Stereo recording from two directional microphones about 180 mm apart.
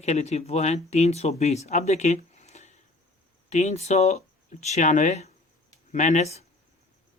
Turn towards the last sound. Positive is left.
turn(degrees=40)  # may be behind; listen again after turning